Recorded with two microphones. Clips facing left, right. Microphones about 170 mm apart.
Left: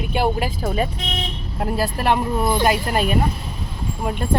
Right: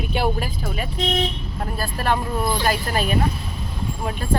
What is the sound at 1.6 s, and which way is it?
Speech, 25° left (ahead or behind).